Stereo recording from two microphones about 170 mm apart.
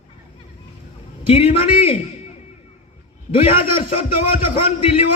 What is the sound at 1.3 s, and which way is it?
Speech, 35° left (ahead or behind).